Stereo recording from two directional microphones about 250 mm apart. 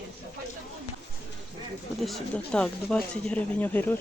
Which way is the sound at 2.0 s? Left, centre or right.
Centre.